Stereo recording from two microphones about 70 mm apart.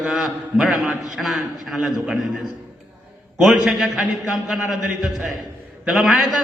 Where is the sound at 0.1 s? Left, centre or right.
Centre.